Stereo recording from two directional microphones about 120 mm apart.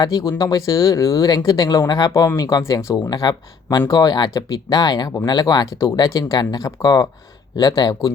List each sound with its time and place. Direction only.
0.0 s speech: 30° left (ahead or behind)